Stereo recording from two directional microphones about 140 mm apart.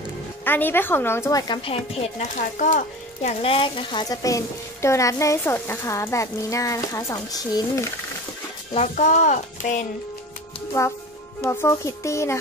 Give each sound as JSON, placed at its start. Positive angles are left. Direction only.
{"t": 0.5, "sound": "a woman's voice", "side_deg": 15}
{"t": 1.5, "sound": "speech", "side_deg": 45}
{"t": 8.7, "sound": "speech", "side_deg": 60}
{"t": 10.8, "sound": "speech", "side_deg": 20}